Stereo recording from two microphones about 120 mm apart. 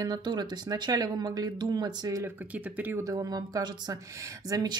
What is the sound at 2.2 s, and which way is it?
Speech, 15° right (ahead or behind).